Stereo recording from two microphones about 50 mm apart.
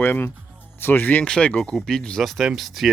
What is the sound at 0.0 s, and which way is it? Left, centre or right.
Speech, left.